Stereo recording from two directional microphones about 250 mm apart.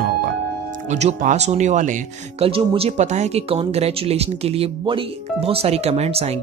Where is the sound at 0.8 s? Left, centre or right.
Right.